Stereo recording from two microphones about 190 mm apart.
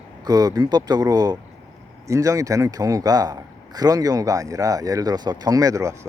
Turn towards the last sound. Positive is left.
turn(degrees=-15)  # may be behind; listen again after turning